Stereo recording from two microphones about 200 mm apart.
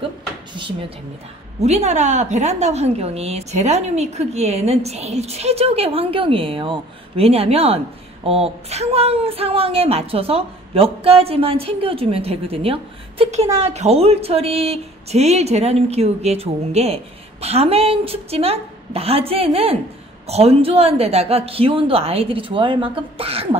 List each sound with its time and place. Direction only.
0.6 s a woman's voice: 25° right (ahead or behind)